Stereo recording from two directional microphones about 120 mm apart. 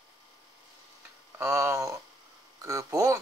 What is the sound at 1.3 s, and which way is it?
Speech, 25° right (ahead or behind).